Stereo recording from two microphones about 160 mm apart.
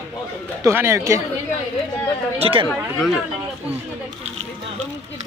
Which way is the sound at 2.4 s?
35° right (ahead or behind).